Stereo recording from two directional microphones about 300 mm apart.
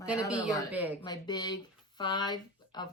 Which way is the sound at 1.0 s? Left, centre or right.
Centre.